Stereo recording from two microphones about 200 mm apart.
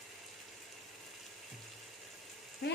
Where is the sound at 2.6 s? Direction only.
55° left (ahead or behind).